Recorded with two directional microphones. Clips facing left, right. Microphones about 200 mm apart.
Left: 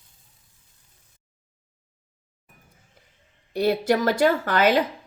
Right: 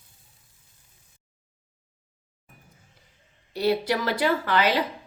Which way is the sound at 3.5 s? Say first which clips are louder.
Left 3 dB; 50° left (ahead or behind).